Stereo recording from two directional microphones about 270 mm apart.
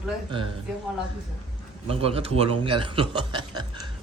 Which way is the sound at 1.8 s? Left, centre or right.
Right.